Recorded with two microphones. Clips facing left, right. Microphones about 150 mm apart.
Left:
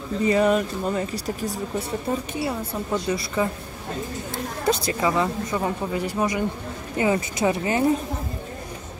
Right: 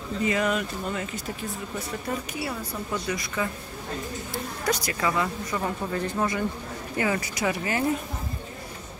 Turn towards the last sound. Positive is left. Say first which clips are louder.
# left 5 dB
turn(degrees=25)  # may be behind; listen again after turning